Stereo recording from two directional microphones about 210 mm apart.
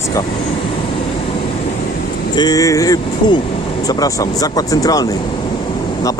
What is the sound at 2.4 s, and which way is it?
Speech, 15° left (ahead or behind).